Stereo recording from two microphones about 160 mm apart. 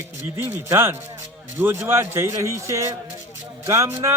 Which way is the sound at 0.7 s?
15° right (ahead or behind).